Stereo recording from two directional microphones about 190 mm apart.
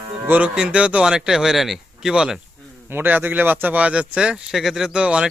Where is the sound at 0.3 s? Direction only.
5° right (ahead or behind).